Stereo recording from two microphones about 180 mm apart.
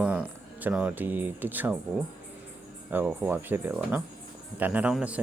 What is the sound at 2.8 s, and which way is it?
Speech, 5° right (ahead or behind).